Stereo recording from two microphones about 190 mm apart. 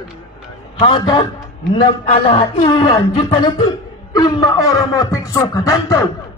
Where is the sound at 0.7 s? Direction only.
25° left (ahead or behind).